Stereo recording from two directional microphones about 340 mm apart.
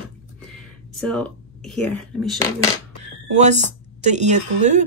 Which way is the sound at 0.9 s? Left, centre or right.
Centre.